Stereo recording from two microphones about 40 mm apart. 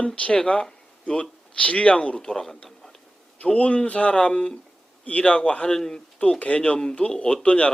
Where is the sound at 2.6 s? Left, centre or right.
Centre.